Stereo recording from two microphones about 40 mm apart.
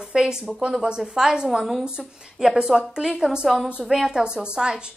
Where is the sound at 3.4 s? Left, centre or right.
Centre.